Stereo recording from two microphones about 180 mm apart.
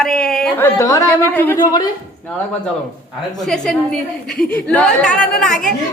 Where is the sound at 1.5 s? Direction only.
25° left (ahead or behind).